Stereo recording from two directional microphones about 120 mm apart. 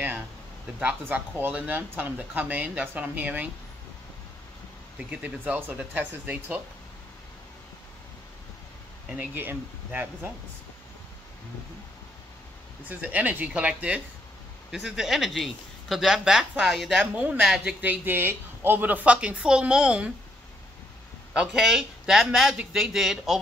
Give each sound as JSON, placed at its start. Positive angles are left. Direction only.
{"t": 0.7, "sound": "speech", "side_deg": -10}
{"t": 4.9, "sound": "speech", "side_deg": -10}
{"t": 9.1, "sound": "speech", "side_deg": -15}
{"t": 12.8, "sound": "speech", "side_deg": -15}
{"t": 17.0, "sound": "speech", "side_deg": -10}
{"t": 18.0, "sound": "speech", "side_deg": -15}
{"t": 21.3, "sound": "speech", "side_deg": -5}